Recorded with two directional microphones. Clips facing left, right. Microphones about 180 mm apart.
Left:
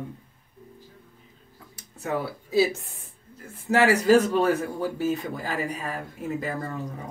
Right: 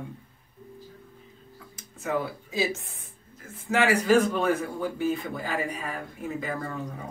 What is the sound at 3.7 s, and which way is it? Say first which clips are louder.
Speech: left 3 dB; 35° left (ahead or behind).